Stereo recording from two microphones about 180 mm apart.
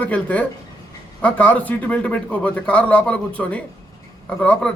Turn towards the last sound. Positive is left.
turn(degrees=10)  # may be behind; listen again after turning